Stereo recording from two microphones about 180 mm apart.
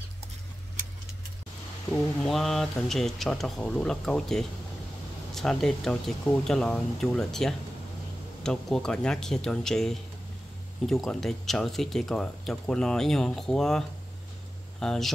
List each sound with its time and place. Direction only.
2.2 s speech: centre (ahead or behind)